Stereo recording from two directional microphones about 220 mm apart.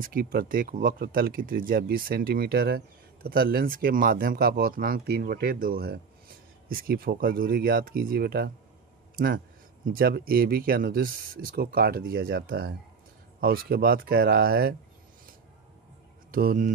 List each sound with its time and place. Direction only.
0.1 s speech: 40° right (ahead or behind)
16.3 s speech: 40° right (ahead or behind)